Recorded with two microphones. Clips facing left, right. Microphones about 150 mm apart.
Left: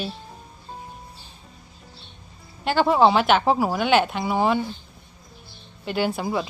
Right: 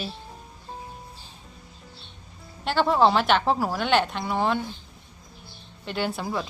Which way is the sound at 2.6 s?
Centre (ahead or behind).